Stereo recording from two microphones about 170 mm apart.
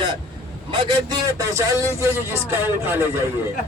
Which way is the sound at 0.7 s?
30° right (ahead or behind).